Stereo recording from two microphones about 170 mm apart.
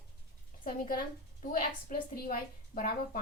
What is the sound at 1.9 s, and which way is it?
A woman's voice, 55° left (ahead or behind).